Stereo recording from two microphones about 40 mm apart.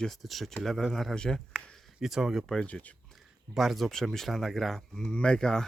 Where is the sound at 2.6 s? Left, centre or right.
Left.